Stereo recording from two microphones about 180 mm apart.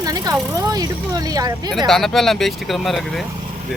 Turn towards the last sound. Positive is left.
turn(degrees=0)  # may be behind; listen again after turning